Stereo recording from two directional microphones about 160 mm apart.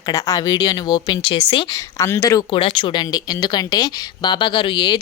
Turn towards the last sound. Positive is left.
turn(degrees=30)  # may be behind; listen again after turning